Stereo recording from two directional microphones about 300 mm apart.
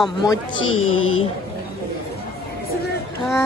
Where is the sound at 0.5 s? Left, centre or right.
Left.